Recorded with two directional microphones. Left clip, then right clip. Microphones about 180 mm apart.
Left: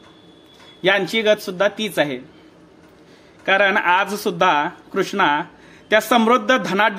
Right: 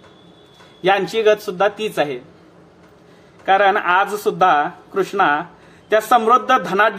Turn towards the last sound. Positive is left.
turn(degrees=35)  # may be behind; listen again after turning